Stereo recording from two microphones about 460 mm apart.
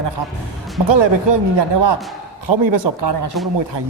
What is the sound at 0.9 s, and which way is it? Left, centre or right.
Speech, right.